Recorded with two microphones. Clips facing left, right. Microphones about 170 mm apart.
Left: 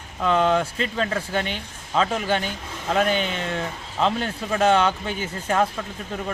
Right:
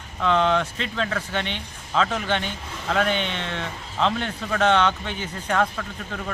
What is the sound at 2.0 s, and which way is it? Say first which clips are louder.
Speech: left 1 dB; 10° left (ahead or behind).